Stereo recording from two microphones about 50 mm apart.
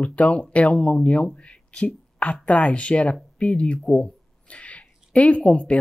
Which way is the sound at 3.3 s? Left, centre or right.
Left.